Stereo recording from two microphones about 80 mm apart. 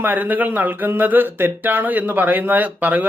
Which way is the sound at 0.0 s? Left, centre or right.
Right.